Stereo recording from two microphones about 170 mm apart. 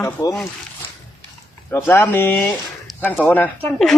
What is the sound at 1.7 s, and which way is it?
Speech, 15° left (ahead or behind).